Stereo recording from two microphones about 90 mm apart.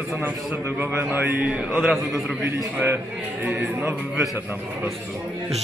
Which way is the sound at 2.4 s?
25° right (ahead or behind).